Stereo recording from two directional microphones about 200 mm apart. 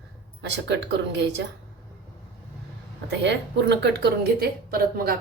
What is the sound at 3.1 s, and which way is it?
A woman's voice, 60° right (ahead or behind).